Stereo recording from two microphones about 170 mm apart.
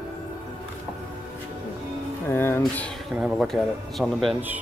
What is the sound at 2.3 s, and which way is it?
Speech, 15° left (ahead or behind).